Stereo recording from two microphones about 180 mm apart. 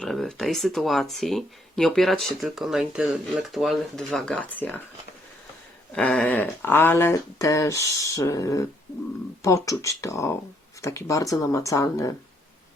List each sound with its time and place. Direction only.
0.0 s speech: centre (ahead or behind)
5.9 s speech: 5° left (ahead or behind)